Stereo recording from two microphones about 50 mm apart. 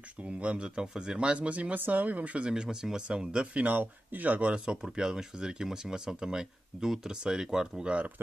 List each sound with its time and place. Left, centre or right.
0.2 s speech: right
3.6 s speech: right
4.8 s speech: centre